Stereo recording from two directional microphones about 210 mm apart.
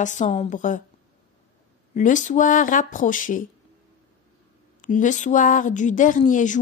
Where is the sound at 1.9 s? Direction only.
35° left (ahead or behind).